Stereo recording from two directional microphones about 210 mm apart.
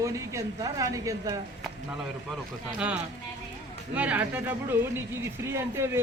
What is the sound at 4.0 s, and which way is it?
Speech, 5° right (ahead or behind).